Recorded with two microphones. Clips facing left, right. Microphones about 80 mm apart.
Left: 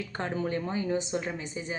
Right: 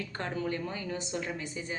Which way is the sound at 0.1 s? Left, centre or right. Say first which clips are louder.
Left 4 dB; centre.